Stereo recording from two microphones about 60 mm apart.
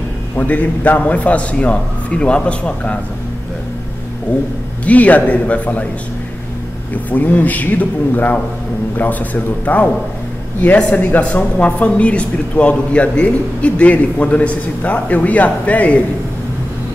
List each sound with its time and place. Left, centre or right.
0.4 s speech: left
4.8 s speech: left
7.1 s speech: left
11.0 s speech: left